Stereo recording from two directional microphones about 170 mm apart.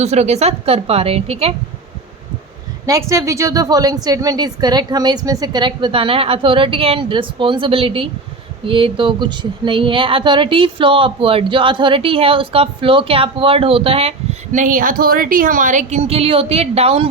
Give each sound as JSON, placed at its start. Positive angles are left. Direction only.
{"t": 0.0, "sound": "a woman's voice", "side_deg": -40}
{"t": 2.8, "sound": "a woman's voice", "side_deg": -20}